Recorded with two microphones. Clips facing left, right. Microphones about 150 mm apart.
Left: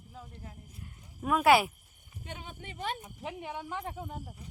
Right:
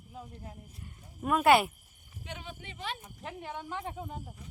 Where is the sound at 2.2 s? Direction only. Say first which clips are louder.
Even; 50° left (ahead or behind).